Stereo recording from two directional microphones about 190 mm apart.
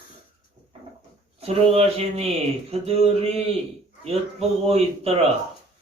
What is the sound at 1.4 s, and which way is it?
A man's voice, 30° right (ahead or behind).